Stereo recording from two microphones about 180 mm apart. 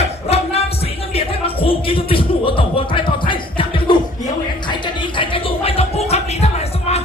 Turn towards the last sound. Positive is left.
turn(degrees=35)  # may be behind; listen again after turning